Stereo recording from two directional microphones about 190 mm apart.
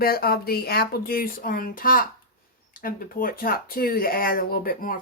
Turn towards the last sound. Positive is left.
turn(degrees=50)  # may be behind; listen again after turning